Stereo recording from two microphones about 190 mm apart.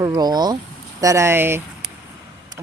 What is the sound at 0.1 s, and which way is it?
A woman's voice, 20° right (ahead or behind).